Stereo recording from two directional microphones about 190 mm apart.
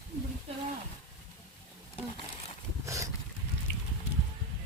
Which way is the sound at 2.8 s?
15° right (ahead or behind).